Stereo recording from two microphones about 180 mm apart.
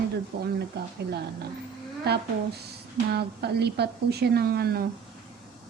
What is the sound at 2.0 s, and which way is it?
A woman's voice, 65° right (ahead or behind).